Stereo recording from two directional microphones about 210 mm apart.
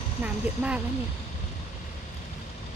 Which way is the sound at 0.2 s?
5° right (ahead or behind).